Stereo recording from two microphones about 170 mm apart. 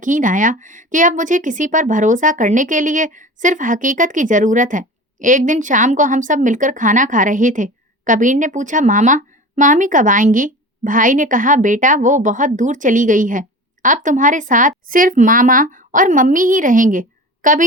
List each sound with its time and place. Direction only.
0.0 s speech: 50° right (ahead or behind)